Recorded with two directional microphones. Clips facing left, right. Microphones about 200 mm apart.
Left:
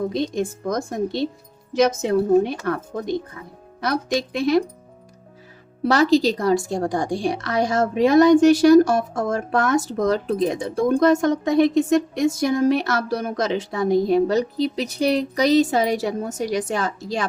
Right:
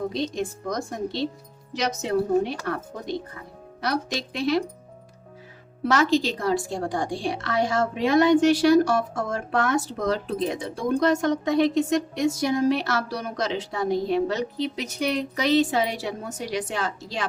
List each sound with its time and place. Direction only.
0.1 s a woman's voice: 50° left (ahead or behind)
3.8 s a woman's voice: 50° left (ahead or behind)
5.8 s a woman's voice: 35° left (ahead or behind)